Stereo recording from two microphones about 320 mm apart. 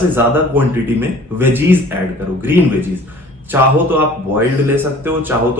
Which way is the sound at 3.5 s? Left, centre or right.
Centre.